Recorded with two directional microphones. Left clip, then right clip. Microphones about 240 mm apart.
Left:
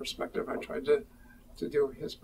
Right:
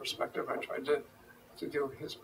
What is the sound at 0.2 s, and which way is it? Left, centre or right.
Speech, left.